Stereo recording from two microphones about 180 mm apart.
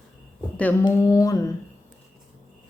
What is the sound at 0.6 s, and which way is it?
Speech, 10° left (ahead or behind).